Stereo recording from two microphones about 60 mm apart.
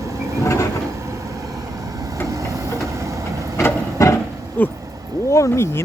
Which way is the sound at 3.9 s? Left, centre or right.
Left.